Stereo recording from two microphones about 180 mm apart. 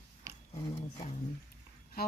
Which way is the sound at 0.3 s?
15° right (ahead or behind).